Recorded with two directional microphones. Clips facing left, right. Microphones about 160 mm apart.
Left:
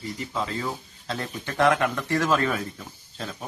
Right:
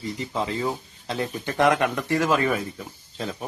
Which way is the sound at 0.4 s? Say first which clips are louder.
Right 4 dB; 20° right (ahead or behind).